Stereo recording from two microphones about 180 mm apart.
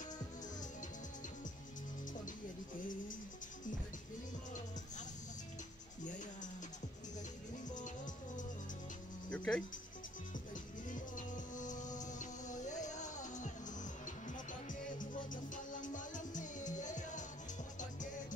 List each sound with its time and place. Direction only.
6.0 s music: 45° left (ahead or behind)
7.8 s music: 45° left (ahead or behind)
9.3 s cricket: 5° left (ahead or behind)
10.9 s music: 45° left (ahead or behind)